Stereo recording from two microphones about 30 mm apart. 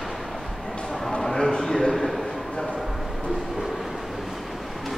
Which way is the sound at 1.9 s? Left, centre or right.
Centre.